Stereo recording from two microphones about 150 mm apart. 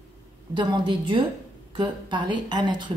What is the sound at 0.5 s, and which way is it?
A woman's voice, 30° right (ahead or behind).